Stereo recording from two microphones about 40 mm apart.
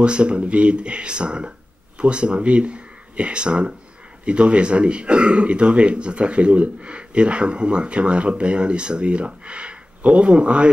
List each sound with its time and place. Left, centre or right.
0.0 s speech: right